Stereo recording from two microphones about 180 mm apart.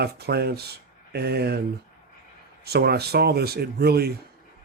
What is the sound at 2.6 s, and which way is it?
Speech, 60° right (ahead or behind).